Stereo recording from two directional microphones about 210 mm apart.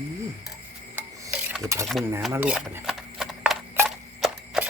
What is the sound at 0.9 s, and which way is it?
Filing, 5° right (ahead or behind).